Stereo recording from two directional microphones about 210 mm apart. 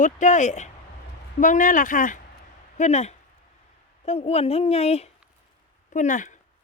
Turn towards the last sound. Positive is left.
turn(degrees=35)  # may be behind; listen again after turning